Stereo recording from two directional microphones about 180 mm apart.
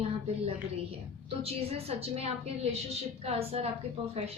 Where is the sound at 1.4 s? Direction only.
35° right (ahead or behind).